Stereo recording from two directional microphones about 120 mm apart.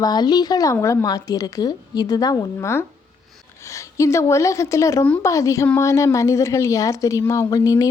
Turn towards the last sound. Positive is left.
turn(degrees=25)  # may be behind; listen again after turning